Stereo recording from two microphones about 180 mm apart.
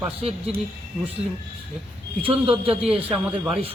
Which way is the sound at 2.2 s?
30° right (ahead or behind).